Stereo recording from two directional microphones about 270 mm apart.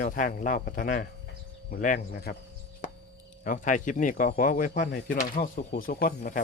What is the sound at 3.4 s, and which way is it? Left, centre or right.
A man's voice, left.